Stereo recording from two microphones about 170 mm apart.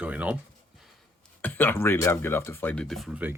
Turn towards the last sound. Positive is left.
turn(degrees=-10)  # may be behind; listen again after turning